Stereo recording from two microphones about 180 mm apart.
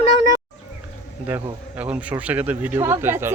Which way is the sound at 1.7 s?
10° right (ahead or behind).